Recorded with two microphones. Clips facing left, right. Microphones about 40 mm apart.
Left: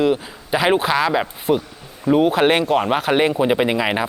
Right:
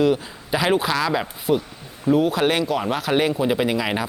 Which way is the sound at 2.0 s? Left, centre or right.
Left.